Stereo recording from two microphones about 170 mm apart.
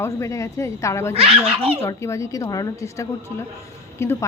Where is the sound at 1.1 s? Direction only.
35° right (ahead or behind).